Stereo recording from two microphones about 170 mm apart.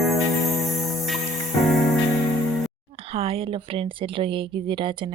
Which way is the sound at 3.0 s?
35° right (ahead or behind).